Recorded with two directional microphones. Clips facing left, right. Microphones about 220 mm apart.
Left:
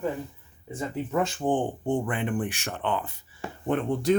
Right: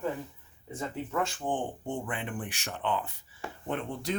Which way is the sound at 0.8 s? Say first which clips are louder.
Left 5 dB; 20° left (ahead or behind).